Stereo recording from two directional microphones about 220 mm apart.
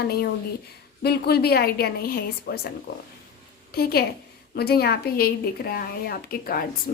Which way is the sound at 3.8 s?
45° left (ahead or behind).